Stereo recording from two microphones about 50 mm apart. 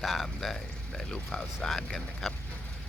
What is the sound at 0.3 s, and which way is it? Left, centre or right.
Speech, centre.